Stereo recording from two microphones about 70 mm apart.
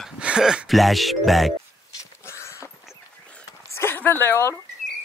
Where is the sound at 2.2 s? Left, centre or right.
Left.